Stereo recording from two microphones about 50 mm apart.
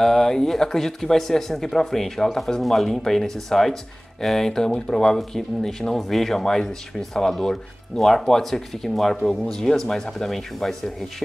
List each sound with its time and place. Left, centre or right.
0.0 s speech: centre